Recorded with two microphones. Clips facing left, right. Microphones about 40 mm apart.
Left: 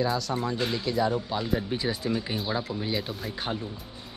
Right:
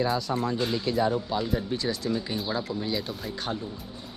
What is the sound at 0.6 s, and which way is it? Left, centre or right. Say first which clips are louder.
Speech: right 1 dB; centre.